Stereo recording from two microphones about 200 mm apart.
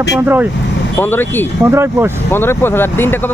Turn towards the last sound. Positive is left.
turn(degrees=10)  # may be behind; listen again after turning